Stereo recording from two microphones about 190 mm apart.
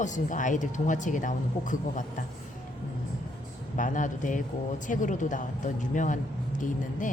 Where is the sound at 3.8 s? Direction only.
45° left (ahead or behind).